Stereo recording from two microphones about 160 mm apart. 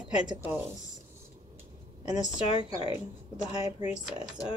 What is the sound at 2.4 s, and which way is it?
Speech, 35° left (ahead or behind).